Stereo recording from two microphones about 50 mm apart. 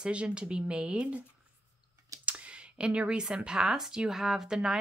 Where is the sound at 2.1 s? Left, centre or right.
Right.